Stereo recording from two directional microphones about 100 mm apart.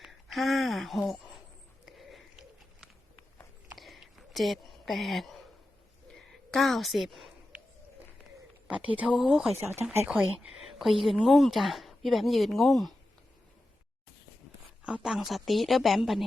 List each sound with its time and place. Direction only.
0.0 s speech: centre (ahead or behind)
1.8 s a sound: centre (ahead or behind)
3.8 s a sound: centre (ahead or behind)
6.5 s a woman's voice: centre (ahead or behind)
7.5 s a sound: 15° right (ahead or behind)
8.6 s a woman's voice: 15° right (ahead or behind)
9.1 s a woman's voice: centre (ahead or behind)
9.6 s speech: 25° right (ahead or behind)
10.1 s a woman's voice: 10° right (ahead or behind)
14.8 s a woman's voice: 5° right (ahead or behind)